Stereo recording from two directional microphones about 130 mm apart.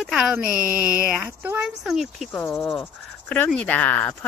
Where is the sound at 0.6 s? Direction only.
25° left (ahead or behind).